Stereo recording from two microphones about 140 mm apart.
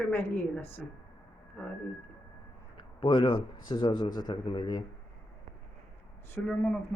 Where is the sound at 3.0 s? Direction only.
35° left (ahead or behind).